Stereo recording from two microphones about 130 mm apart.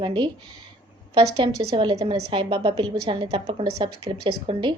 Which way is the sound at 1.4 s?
40° right (ahead or behind).